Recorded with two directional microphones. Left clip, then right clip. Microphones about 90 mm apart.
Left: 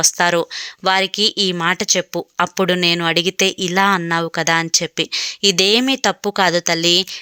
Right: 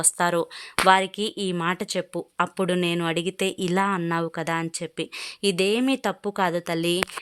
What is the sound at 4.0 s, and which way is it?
Speech, 15° left (ahead or behind).